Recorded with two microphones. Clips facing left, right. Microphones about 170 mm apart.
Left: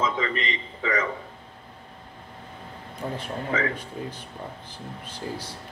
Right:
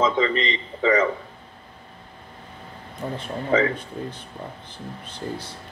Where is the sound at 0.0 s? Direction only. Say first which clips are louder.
Right 6 dB; 30° right (ahead or behind).